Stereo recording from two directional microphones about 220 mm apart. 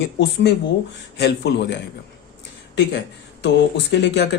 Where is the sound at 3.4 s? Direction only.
50° left (ahead or behind).